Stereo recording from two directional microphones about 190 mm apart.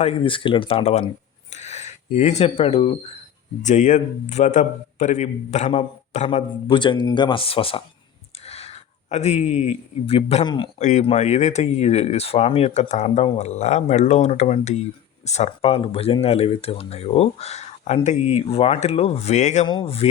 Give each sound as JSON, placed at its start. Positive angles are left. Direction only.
{"t": 0.0, "sound": "speech", "side_deg": 30}
{"t": 10.8, "sound": "speech", "side_deg": 40}
{"t": 19.6, "sound": "speech", "side_deg": 25}